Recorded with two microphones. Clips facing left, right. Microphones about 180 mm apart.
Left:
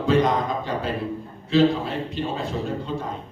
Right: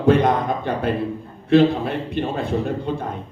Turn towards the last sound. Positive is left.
turn(degrees=-60)  # may be behind; listen again after turning